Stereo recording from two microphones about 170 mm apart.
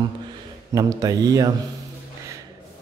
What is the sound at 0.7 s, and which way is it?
Speech, 20° right (ahead or behind).